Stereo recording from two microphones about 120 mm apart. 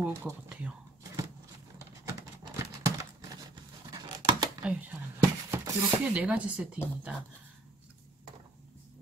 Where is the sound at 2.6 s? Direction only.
25° right (ahead or behind).